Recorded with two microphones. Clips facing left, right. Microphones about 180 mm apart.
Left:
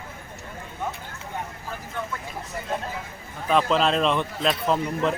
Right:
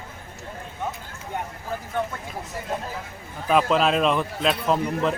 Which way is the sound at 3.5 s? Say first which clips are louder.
Right 1 dB; 5° right (ahead or behind).